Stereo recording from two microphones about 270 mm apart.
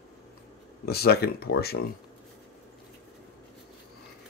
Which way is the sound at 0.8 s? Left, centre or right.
Left.